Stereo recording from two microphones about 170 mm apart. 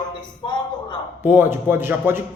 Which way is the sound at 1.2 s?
10° right (ahead or behind).